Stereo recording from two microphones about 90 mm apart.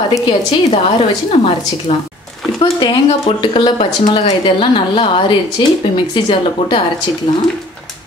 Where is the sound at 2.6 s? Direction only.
65° left (ahead or behind).